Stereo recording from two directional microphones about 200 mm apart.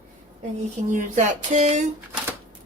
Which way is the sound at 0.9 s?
40° right (ahead or behind).